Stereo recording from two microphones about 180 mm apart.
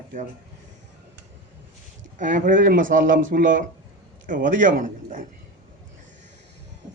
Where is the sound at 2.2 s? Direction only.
45° right (ahead or behind).